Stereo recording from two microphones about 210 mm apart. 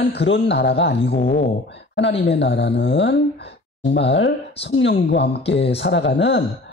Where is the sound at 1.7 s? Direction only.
55° left (ahead or behind).